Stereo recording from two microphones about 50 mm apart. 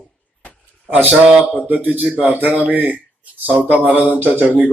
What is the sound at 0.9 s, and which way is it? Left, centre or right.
Speech, right.